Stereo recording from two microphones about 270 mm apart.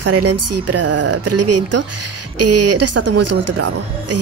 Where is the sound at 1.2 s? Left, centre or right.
Right.